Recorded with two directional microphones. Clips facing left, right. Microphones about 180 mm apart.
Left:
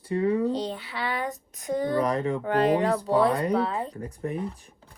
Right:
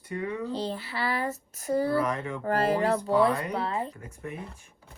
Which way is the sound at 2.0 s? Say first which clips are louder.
Left 4 dB; 35° left (ahead or behind).